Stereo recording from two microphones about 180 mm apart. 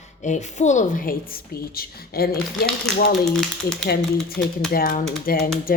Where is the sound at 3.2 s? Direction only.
Centre (ahead or behind).